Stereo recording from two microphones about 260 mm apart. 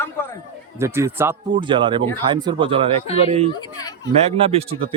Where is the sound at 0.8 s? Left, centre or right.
Centre.